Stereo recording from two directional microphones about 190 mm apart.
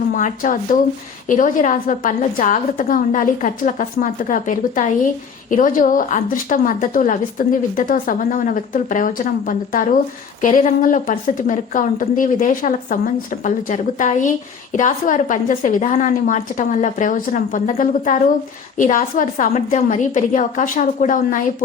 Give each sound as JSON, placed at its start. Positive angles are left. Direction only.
{"t": 0.2, "sound": "a woman's voice", "side_deg": 45}